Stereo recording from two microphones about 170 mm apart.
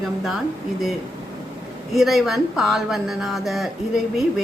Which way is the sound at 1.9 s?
Centre (ahead or behind).